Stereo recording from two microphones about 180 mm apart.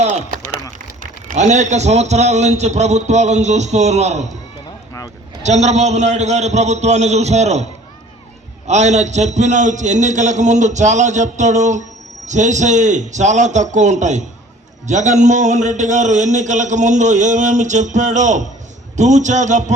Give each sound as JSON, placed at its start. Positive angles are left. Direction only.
{"t": 0.0, "sound": "a sound", "side_deg": -40}
{"t": 1.3, "sound": "a man's voice", "side_deg": -40}
{"t": 5.4, "sound": "a man's voice", "side_deg": -40}